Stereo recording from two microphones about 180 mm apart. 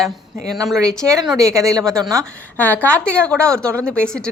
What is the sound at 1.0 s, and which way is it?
Speech, 15° right (ahead or behind).